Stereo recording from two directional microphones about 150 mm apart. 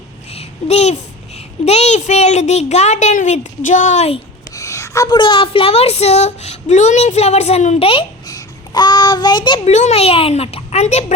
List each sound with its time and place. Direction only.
0.3 s a sound: 45° left (ahead or behind)
1.4 s a woman's voice: 45° left (ahead or behind)
4.5 s a woman's voice: 20° left (ahead or behind); by 8.0 s 40° left (ahead or behind)
8.3 s a child's voice: 25° left (ahead or behind)
9.6 s a woman's voice: 50° left (ahead or behind)